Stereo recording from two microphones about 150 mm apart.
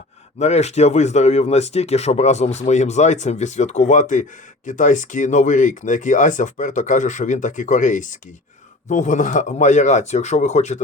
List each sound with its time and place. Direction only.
0.3 s a man's voice: 50° left (ahead or behind)